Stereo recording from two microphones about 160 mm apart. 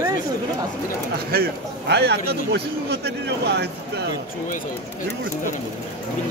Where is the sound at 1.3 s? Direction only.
80° right.